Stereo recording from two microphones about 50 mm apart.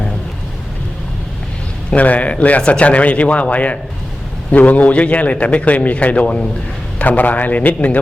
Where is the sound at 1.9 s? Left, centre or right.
Left.